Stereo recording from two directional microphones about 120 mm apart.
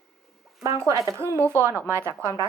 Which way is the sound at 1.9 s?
20° right (ahead or behind).